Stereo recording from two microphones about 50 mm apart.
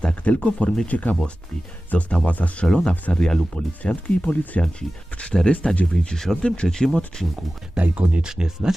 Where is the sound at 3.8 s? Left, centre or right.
Left.